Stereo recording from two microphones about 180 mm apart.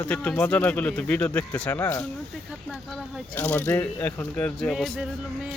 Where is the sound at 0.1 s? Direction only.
10° left (ahead or behind).